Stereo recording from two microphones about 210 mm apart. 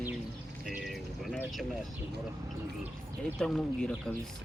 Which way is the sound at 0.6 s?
Centre (ahead or behind).